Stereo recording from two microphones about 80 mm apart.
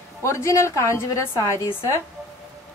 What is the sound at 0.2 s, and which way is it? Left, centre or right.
A woman's voice, left.